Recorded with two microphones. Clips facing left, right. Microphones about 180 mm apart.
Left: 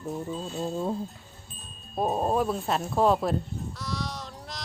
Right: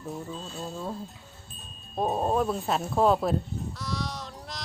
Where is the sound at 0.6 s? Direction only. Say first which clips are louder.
Left 6 dB; 25° left (ahead or behind).